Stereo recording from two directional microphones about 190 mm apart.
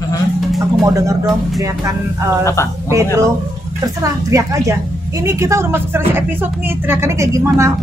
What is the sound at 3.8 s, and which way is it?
Speech, 15° right (ahead or behind).